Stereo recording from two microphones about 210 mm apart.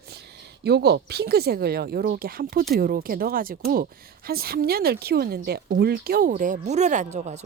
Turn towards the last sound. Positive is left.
turn(degrees=-35)  # may be behind; listen again after turning